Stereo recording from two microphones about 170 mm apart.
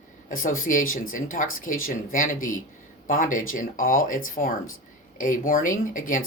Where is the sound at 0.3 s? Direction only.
55° left (ahead or behind).